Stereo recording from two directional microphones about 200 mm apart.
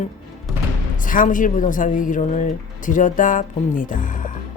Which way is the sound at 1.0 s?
40° left (ahead or behind).